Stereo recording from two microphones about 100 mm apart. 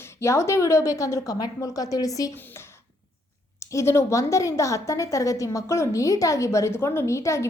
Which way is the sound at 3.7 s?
25° left (ahead or behind).